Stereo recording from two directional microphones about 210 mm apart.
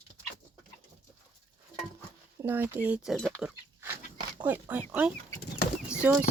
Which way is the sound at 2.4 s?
10° right (ahead or behind).